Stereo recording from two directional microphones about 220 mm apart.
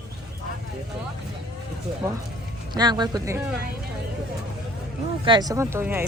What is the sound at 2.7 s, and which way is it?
Speech, 20° right (ahead or behind).